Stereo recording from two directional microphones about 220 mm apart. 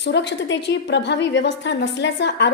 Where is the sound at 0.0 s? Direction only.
55° left (ahead or behind).